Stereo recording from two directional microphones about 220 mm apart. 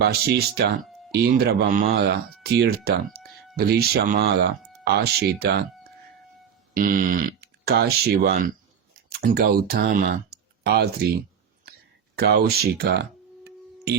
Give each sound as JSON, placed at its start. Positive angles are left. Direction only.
{"t": 0.0, "sound": "speech", "side_deg": -45}
{"t": 6.7, "sound": "a sound", "side_deg": -40}
{"t": 7.7, "sound": "speech", "side_deg": -45}
{"t": 12.1, "sound": "speech", "side_deg": -45}